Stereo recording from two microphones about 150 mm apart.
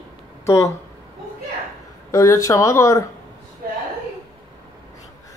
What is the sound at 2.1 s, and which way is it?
Speech, 20° left (ahead or behind).